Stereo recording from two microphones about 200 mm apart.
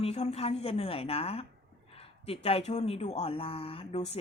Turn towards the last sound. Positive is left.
turn(degrees=30)  # may be behind; listen again after turning